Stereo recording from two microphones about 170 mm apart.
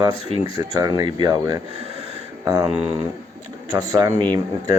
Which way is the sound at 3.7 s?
20° right (ahead or behind).